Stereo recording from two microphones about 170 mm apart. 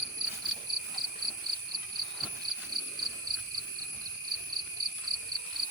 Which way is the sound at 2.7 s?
60° right (ahead or behind).